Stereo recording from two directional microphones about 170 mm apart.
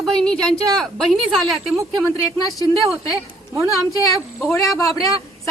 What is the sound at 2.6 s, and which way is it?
Speech, 20° left (ahead or behind).